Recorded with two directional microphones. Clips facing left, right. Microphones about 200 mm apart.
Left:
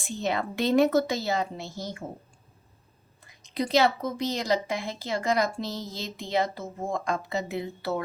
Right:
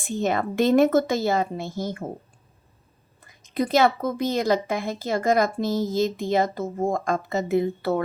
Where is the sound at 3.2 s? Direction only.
50° right (ahead or behind).